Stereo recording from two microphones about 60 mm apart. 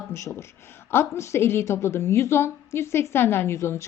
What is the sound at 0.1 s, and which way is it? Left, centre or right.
A woman's voice, left.